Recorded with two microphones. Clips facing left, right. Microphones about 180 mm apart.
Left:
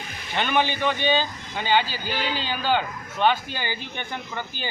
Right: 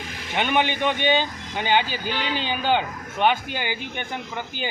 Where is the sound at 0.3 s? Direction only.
15° right (ahead or behind).